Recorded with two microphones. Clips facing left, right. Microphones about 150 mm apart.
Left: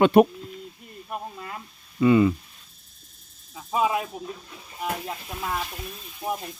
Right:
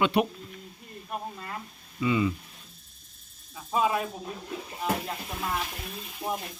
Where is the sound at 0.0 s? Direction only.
45° left (ahead or behind).